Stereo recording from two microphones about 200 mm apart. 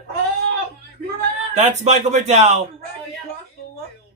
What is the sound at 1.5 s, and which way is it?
Speech, 35° right (ahead or behind).